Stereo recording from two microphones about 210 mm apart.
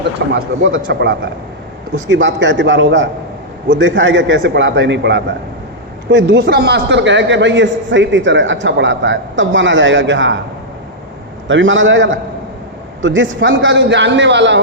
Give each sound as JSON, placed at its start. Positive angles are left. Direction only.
{"t": 0.3, "sound": "a man's voice", "side_deg": -65}
{"t": 0.9, "sound": "a man's voice", "side_deg": -50}
{"t": 11.4, "sound": "a man's voice", "side_deg": -65}